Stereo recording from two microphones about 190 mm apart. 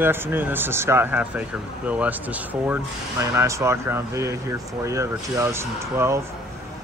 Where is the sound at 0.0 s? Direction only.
10° right (ahead or behind).